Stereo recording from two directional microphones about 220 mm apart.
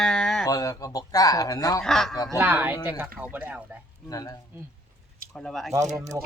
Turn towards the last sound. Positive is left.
turn(degrees=-15)  # may be behind; listen again after turning